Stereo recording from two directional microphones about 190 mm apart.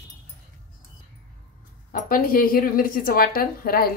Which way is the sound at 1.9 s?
45° left (ahead or behind).